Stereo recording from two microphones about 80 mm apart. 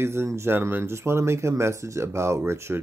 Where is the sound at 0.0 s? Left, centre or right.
Right.